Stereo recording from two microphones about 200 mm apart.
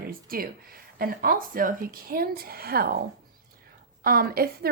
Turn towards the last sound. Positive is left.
turn(degrees=-45)  # may be behind; listen again after turning